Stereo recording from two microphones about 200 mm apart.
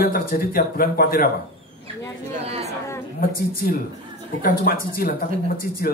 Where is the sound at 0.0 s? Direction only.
45° left (ahead or behind).